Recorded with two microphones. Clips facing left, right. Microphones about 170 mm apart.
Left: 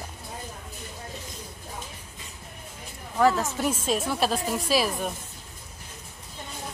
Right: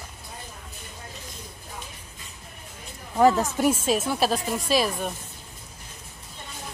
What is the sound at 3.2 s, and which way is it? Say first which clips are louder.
Speech: right 3 dB; 15° right (ahead or behind).